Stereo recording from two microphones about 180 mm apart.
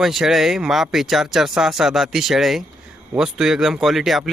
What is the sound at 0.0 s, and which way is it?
Speech, centre (ahead or behind).